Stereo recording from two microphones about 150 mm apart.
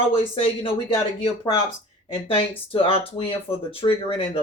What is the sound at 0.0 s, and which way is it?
Speech, 35° left (ahead or behind).